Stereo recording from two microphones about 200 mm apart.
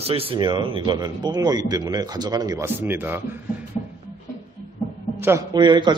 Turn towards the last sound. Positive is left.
turn(degrees=-20)  # may be behind; listen again after turning